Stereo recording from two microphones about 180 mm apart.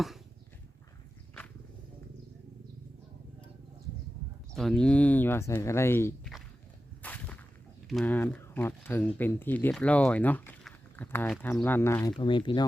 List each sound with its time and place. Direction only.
4.5 s speech: 5° left (ahead or behind)
7.0 s a sound: 10° left (ahead or behind)
7.9 s speech: 5° left (ahead or behind)
12.2 s speech: 25° left (ahead or behind)